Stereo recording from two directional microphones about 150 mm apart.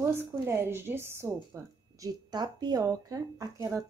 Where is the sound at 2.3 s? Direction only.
30° right (ahead or behind).